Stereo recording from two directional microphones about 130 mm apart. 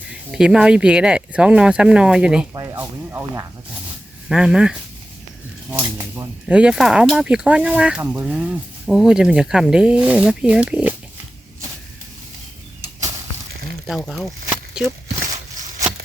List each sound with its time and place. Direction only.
0.3 s speech: 5° right (ahead or behind)
2.5 s speech: 25° right (ahead or behind)
4.3 s speech: 5° right (ahead or behind)
5.7 s speech: 20° right (ahead or behind)
6.5 s speech: 10° right (ahead or behind)
13.8 s speech: centre (ahead or behind)